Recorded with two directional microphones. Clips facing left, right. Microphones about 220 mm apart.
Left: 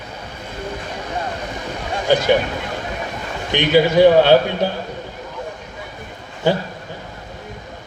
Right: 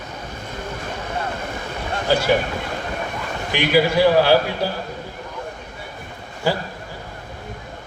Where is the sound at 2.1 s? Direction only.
20° left (ahead or behind).